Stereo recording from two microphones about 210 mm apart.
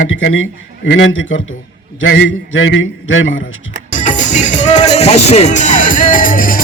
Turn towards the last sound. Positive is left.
turn(degrees=40)  # may be behind; listen again after turning